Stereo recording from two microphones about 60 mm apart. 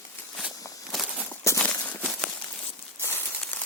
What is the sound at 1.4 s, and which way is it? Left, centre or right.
Walk, left.